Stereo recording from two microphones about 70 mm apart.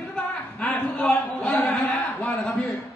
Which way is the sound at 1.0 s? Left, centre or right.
Centre.